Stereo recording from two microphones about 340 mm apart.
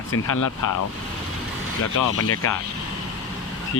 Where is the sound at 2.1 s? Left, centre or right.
Left.